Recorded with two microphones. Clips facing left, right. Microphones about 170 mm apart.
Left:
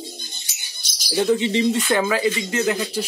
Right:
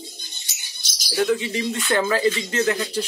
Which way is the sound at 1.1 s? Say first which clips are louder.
Left 3 dB; 25° left (ahead or behind).